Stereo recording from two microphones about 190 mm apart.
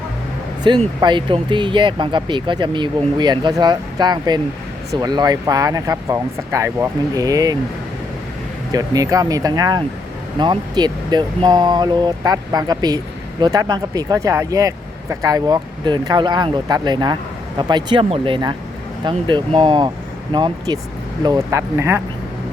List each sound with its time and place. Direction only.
0.7 s speech: 25° right (ahead or behind)
8.7 s speech: 20° right (ahead or behind)